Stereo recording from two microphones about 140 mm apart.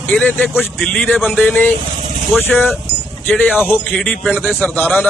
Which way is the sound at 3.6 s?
15° left (ahead or behind).